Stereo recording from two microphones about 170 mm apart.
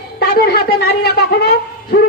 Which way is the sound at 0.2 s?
60° left (ahead or behind).